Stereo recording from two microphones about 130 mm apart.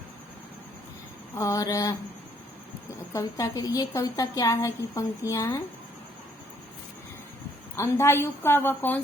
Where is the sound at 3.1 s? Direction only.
25° left (ahead or behind).